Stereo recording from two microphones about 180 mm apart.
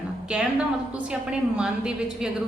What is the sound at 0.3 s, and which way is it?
A woman's voice, 5° right (ahead or behind).